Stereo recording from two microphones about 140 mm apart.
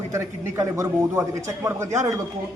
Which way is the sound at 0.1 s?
20° right (ahead or behind).